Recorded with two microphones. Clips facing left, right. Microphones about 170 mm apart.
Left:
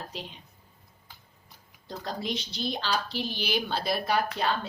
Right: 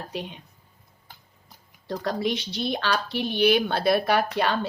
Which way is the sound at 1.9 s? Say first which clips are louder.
Right 7 dB; 70° right (ahead or behind).